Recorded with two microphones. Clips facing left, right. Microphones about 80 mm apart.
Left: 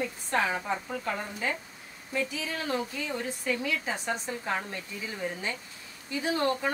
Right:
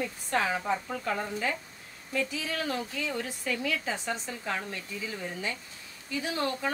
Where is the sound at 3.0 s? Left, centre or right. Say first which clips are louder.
Left 1 dB; left.